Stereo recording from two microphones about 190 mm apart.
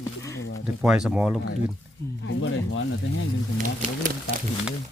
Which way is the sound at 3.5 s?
45° right (ahead or behind).